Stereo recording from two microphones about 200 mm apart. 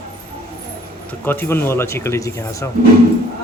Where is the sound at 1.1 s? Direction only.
10° left (ahead or behind).